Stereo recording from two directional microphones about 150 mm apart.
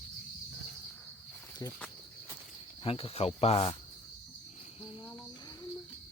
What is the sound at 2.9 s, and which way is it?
Speech, 40° left (ahead or behind).